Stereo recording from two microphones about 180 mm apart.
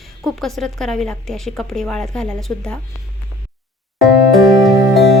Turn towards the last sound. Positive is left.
turn(degrees=0)  # may be behind; listen again after turning